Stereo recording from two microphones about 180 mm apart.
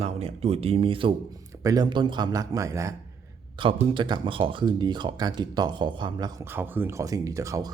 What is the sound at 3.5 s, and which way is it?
Speech, 30° right (ahead or behind).